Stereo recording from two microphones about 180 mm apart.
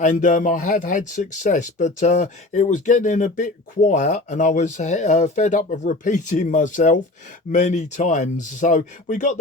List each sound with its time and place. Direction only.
0.0 s speech: 45° left (ahead or behind)